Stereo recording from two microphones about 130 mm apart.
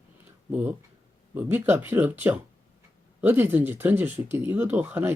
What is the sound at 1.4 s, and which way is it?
Speech, 15° right (ahead or behind).